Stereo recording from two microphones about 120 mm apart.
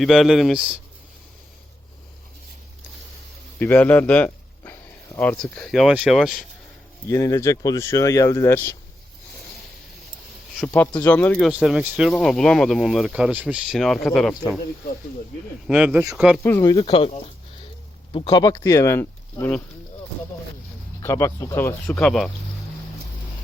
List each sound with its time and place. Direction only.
0.0 s speech: centre (ahead or behind)
3.6 s a sound: 15° left (ahead or behind)
5.4 s speech: 5° left (ahead or behind)
7.1 s speech: 25° left (ahead or behind)
10.7 s speech: 15° left (ahead or behind)
11.7 s speech: 5° right (ahead or behind)
12.1 s speech: 5° left (ahead or behind)
15.7 s speech: 10° right (ahead or behind)
16.4 s speech: 20° left (ahead or behind)
16.8 s speech: 50° left (ahead or behind)
18.1 s speech: 40° left (ahead or behind)
18.5 s speech: 25° left (ahead or behind)
21.0 s speech: 25° left (ahead or behind)